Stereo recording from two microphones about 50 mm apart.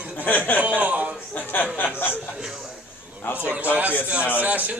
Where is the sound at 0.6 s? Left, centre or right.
Right.